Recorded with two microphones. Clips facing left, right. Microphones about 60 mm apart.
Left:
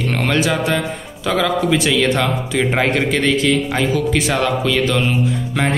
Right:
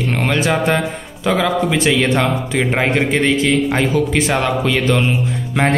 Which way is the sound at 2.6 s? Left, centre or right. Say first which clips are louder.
Even; centre.